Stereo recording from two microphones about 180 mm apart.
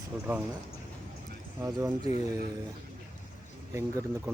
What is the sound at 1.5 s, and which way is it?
Speech, 15° right (ahead or behind).